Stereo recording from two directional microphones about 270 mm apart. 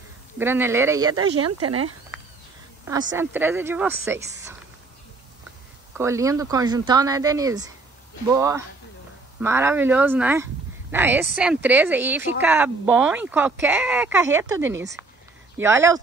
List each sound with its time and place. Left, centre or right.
0.4 s speech: centre
1.1 s speech: right
2.9 s speech: centre
5.9 s speech: centre